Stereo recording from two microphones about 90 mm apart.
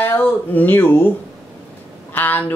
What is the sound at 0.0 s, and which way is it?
Speech, 20° left (ahead or behind).